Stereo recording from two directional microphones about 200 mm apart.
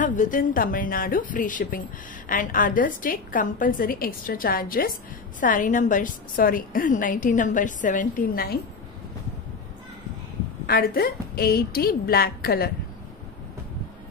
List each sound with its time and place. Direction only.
0.0 s a woman's voice: 40° left (ahead or behind)
10.7 s a woman's voice: 50° left (ahead or behind)